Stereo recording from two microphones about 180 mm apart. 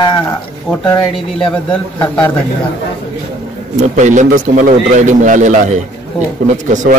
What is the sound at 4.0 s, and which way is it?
A man's voice, 45° right (ahead or behind).